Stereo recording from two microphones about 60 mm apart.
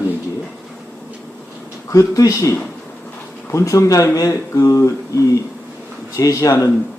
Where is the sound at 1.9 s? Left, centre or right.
Left.